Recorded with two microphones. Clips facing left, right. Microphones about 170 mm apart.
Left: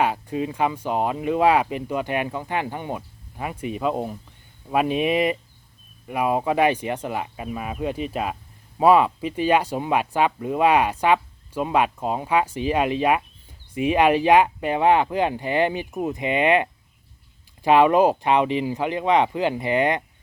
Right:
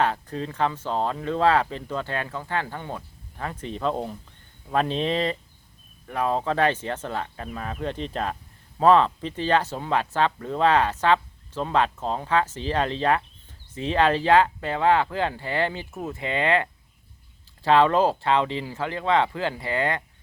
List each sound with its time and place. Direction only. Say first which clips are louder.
0.0 s speech: left 2 dB; 10° left (ahead or behind)